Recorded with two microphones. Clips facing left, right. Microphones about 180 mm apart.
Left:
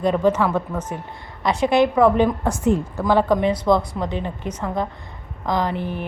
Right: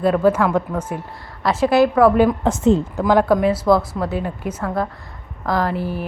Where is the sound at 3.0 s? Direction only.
10° right (ahead or behind).